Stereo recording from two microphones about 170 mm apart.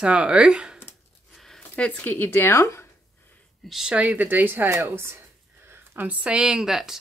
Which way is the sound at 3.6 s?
5° right (ahead or behind).